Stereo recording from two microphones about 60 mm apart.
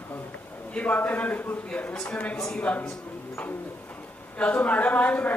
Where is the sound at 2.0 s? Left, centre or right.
Centre.